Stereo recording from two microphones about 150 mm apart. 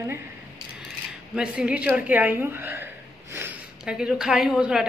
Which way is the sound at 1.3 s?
5° right (ahead or behind).